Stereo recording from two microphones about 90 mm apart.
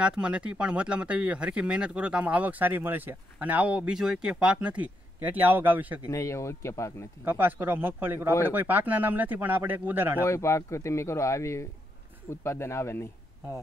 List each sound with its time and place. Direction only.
0.0 s speech: 10° right (ahead or behind)
6.0 s speech: 35° left (ahead or behind)
7.2 s speech: 20° right (ahead or behind)
10.2 s speech: 30° left (ahead or behind)